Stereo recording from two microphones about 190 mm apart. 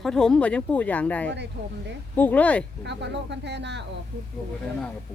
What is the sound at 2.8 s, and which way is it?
Speech, 65° right (ahead or behind).